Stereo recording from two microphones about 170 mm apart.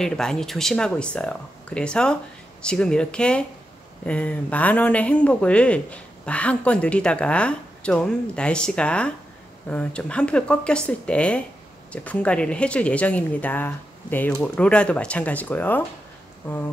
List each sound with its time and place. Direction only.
0.0 s speech: 5° left (ahead or behind)